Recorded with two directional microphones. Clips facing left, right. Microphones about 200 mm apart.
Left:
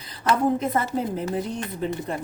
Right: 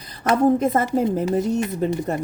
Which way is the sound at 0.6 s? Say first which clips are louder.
Right 5 dB; 50° right (ahead or behind).